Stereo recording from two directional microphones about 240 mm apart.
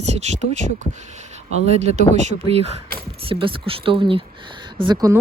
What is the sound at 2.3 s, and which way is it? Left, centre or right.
Speech, left.